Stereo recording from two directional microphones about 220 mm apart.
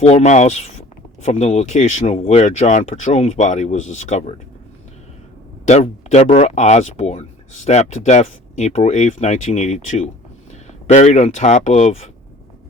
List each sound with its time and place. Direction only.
0.0 s speech: 30° left (ahead or behind)
5.6 s speech: 30° left (ahead or behind)